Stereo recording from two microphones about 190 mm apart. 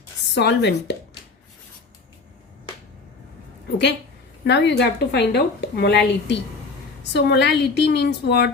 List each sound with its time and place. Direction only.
0.3 s a woman's voice: 65° left (ahead or behind)
4.4 s a woman's voice: 60° left (ahead or behind)